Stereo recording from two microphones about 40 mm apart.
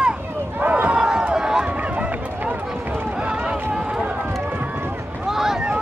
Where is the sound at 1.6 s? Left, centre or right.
Right.